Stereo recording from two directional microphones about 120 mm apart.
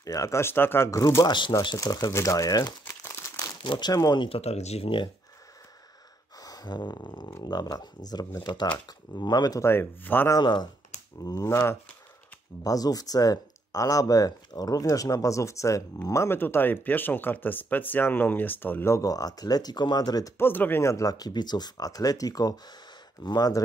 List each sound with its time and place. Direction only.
0.0 s speech: 30° left (ahead or behind)
1.3 s speech: 40° left (ahead or behind)
2.9 s crumpling: 25° left (ahead or behind)
3.6 s speech: 40° left (ahead or behind)
4.3 s speech: 60° left (ahead or behind)
6.4 s a sound: 35° left (ahead or behind)
7.4 s speech: 35° left (ahead or behind); by 10.3 s 20° left (ahead or behind)
10.3 s speech: 35° left (ahead or behind)
20.3 s speech: 15° left (ahead or behind); by 23.6 s 35° left (ahead or behind)